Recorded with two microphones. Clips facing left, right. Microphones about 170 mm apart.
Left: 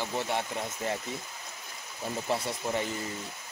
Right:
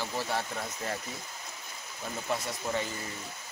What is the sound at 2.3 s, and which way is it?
Speech, 30° left (ahead or behind).